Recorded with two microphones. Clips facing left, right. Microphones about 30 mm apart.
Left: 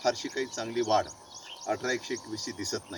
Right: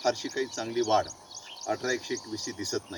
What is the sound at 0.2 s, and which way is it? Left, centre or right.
Speech, centre.